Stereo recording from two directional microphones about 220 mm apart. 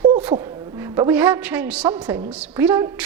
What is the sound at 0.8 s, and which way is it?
Speech, 10° right (ahead or behind).